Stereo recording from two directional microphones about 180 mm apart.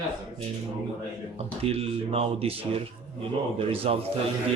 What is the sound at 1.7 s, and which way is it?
A man's voice, 35° right (ahead or behind).